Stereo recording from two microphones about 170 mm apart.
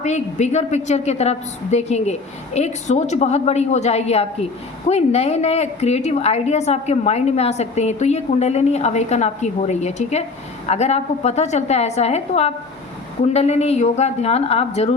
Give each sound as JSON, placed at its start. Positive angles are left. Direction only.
{"t": 0.0, "sound": "a woman's voice", "side_deg": 40}